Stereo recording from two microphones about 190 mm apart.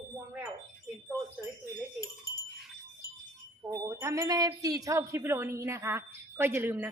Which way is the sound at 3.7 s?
15° right (ahead or behind).